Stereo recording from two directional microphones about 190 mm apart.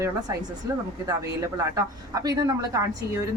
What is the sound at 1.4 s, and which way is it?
A woman's voice, 15° right (ahead or behind).